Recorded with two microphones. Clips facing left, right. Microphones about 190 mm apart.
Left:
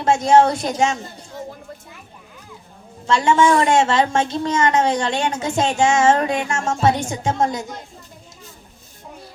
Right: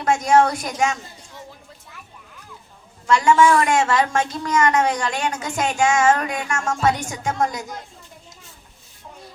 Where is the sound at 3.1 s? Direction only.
25° left (ahead or behind).